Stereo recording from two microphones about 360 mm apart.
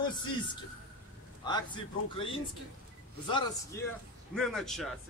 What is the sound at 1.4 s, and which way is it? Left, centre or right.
A man's voice, centre.